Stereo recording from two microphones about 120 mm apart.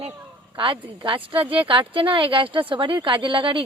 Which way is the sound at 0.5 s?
45° right (ahead or behind).